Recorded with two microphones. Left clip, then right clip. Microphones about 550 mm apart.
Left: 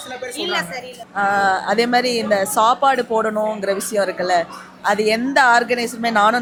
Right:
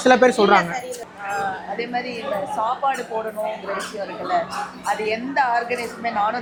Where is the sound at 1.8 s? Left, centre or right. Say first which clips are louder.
Left 9 dB; left.